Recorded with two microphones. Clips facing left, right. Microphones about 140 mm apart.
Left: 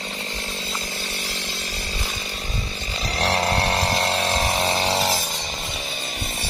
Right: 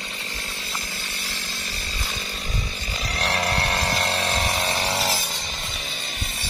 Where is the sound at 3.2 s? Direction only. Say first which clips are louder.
Left 4 dB; 30° left (ahead or behind).